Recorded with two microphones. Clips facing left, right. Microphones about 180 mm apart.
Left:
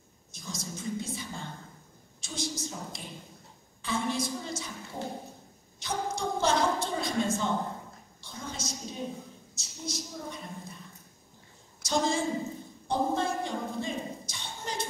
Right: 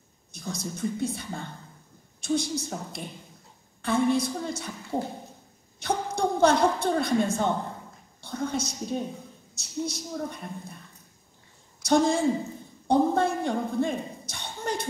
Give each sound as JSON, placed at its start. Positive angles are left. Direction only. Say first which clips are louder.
{"t": 0.3, "sound": "a woman's voice", "louder": "right 5 dB", "side_deg": -60}
{"t": 5.8, "sound": "a sound", "louder": "right 6 dB", "side_deg": -60}
{"t": 8.2, "sound": "a woman's voice", "louder": "right 10 dB", "side_deg": -60}
{"t": 11.8, "sound": "a woman's voice", "louder": "right 7 dB", "side_deg": -55}